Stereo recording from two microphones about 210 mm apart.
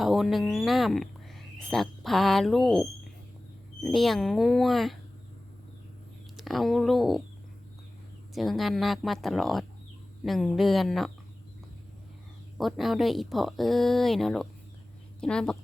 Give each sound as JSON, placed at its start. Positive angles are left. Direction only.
{"t": 0.0, "sound": "speech", "side_deg": 0}
{"t": 3.8, "sound": "speech", "side_deg": 0}
{"t": 6.3, "sound": "speech", "side_deg": 0}
{"t": 8.4, "sound": "speech", "side_deg": 0}
{"t": 12.5, "sound": "speech", "side_deg": 0}